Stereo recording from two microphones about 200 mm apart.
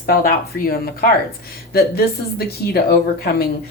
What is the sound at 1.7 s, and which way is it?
Speech, 50° left (ahead or behind).